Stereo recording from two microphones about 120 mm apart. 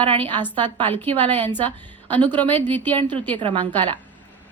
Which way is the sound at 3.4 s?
45° right (ahead or behind).